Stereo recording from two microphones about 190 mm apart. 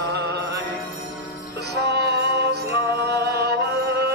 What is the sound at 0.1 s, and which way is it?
Music, 60° right (ahead or behind).